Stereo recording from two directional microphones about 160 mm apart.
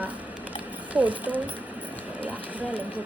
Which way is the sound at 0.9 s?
10° right (ahead or behind).